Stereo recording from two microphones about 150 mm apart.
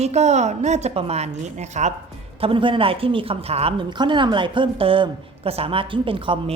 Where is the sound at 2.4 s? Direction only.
35° right (ahead or behind).